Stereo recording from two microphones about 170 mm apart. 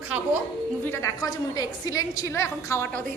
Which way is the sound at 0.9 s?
20° left (ahead or behind).